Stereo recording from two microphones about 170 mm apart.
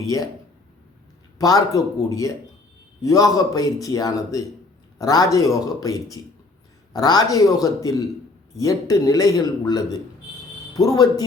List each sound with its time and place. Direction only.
1.4 s a man's voice: 20° left (ahead or behind)